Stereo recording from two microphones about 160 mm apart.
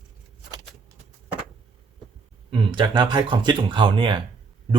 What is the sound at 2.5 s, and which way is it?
A man's voice, 30° right (ahead or behind).